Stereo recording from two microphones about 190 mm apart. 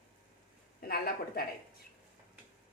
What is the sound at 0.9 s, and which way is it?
Speech, 55° left (ahead or behind).